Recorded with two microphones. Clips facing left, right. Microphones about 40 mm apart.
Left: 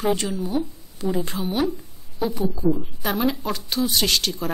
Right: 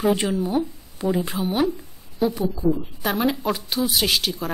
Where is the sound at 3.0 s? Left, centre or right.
Centre.